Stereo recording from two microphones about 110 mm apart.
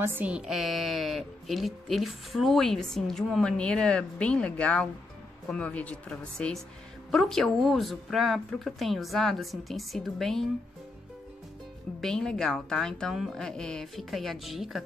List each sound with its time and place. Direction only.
0.0 s a woman's voice: 20° right (ahead or behind)
0.3 s speech: 5° right (ahead or behind)
12.0 s speech: 5° left (ahead or behind)